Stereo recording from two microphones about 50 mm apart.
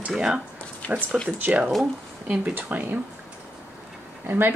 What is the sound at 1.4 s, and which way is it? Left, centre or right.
Speech, right.